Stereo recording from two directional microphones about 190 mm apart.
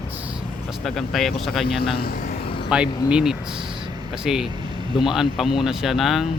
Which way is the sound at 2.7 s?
5° right (ahead or behind).